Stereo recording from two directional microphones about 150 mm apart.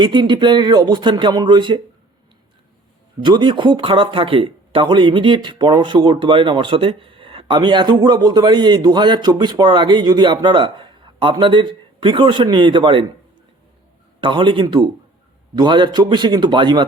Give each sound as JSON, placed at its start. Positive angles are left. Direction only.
{"t": 0.0, "sound": "speech", "side_deg": -30}
{"t": 3.2, "sound": "speech", "side_deg": -30}
{"t": 14.2, "sound": "speech", "side_deg": -35}